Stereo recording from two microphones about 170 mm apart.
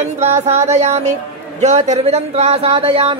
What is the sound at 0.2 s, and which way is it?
Speech, 40° right (ahead or behind).